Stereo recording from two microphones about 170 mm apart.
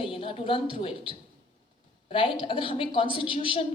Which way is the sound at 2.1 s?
30° left (ahead or behind).